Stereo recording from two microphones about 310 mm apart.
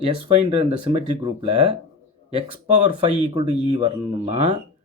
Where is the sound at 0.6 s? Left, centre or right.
Centre.